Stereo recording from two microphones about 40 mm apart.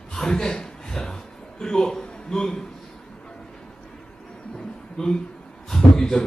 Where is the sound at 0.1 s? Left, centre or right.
Centre.